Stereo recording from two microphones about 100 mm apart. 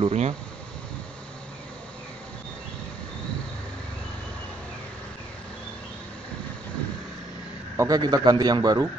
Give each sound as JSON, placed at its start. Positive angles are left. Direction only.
{"t": 0.0, "sound": "speech", "side_deg": -90}
{"t": 7.7, "sound": "a sound", "side_deg": -30}
{"t": 8.0, "sound": "a man's voice", "side_deg": -45}